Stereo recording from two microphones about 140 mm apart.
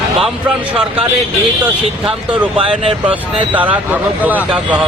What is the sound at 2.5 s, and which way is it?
Speech, 40° right (ahead or behind).